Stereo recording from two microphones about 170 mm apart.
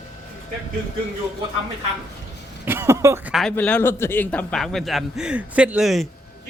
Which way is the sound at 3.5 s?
10° left (ahead or behind).